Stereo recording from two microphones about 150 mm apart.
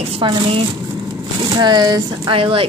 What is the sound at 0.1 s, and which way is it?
A woman's voice, 35° right (ahead or behind).